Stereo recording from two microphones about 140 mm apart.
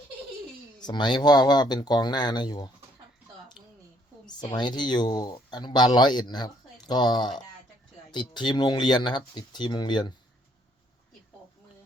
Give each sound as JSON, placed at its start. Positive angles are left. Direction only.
{"t": 0.8, "sound": "speech", "side_deg": 30}
{"t": 4.3, "sound": "speech", "side_deg": 30}